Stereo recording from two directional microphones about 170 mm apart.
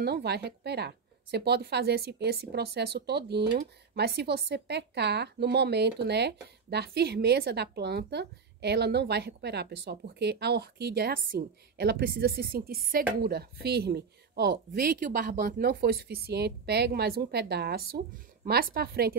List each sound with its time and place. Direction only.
0.0 s a woman's voice: 75° right (ahead or behind)
14.9 s a woman's voice: 50° right (ahead or behind)